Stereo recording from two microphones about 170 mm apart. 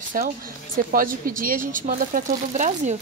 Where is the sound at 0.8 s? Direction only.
55° right (ahead or behind).